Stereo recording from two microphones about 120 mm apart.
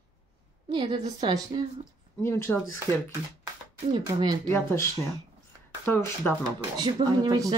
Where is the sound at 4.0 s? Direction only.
35° right (ahead or behind).